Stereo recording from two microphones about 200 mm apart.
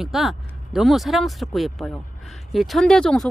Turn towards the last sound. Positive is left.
turn(degrees=5)  # may be behind; listen again after turning